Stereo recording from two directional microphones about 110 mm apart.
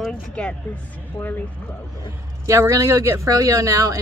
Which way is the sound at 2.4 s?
30° right (ahead or behind).